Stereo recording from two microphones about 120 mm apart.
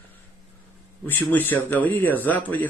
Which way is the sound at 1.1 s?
15° left (ahead or behind).